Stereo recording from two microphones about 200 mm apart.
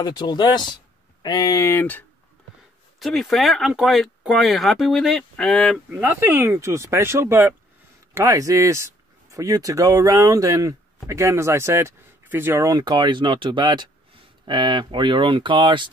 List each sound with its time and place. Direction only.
0.0 s speech: 20° left (ahead or behind); by 5.8 s centre (ahead or behind)
5.9 s speech: 10° right (ahead or behind)